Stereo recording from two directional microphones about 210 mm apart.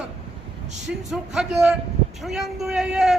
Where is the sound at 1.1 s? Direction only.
Centre (ahead or behind).